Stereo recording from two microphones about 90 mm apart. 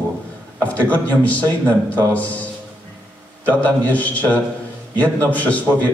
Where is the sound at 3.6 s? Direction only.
15° left (ahead or behind).